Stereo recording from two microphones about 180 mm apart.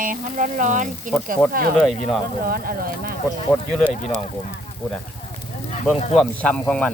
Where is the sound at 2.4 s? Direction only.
55° right (ahead or behind).